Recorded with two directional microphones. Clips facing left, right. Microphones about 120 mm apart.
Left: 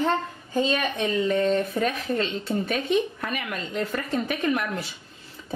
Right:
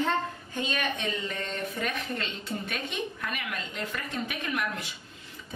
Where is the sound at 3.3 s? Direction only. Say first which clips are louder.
Left 5 dB; 40° left (ahead or behind).